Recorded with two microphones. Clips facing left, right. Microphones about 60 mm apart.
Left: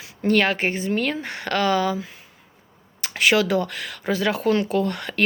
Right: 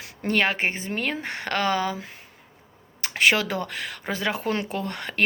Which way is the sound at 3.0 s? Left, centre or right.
Right.